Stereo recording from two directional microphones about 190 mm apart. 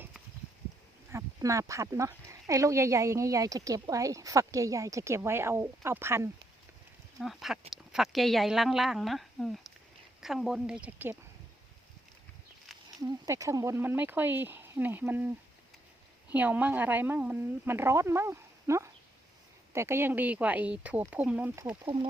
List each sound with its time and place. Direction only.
1.1 s speech: 15° right (ahead or behind)
7.2 s a woman's voice: centre (ahead or behind)
13.1 s speech: 15° right (ahead or behind)
16.3 s speech: 10° right (ahead or behind)